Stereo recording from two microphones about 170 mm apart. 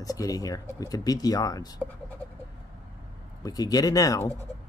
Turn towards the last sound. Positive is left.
turn(degrees=20)  # may be behind; listen again after turning